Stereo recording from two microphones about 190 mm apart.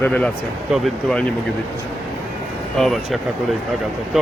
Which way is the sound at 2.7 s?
Centre (ahead or behind).